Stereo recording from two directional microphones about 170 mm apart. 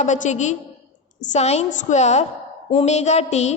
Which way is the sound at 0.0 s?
45° left (ahead or behind).